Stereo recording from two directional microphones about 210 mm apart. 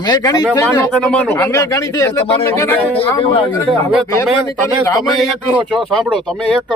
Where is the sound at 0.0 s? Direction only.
20° left (ahead or behind).